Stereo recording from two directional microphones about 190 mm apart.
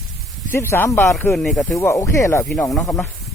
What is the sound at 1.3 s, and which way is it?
Speech, centre (ahead or behind).